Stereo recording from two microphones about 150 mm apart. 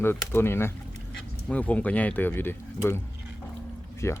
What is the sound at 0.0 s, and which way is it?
Speech, 15° left (ahead or behind).